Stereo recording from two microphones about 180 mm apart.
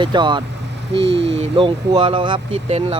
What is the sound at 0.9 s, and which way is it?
Speech, 80° right.